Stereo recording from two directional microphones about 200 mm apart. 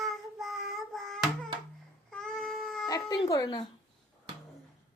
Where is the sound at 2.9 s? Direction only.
20° left (ahead or behind).